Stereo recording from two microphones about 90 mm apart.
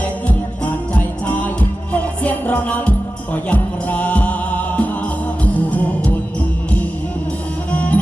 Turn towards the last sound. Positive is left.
turn(degrees=15)  # may be behind; listen again after turning